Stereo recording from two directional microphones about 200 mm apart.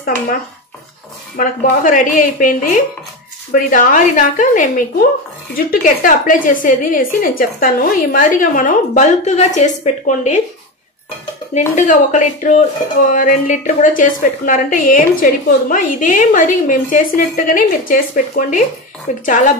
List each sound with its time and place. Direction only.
1.3 s a woman's voice: 40° left (ahead or behind)
11.5 s a woman's voice: 40° left (ahead or behind)